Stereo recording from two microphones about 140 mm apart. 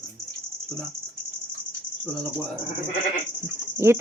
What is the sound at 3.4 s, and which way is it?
Speech, 20° right (ahead or behind).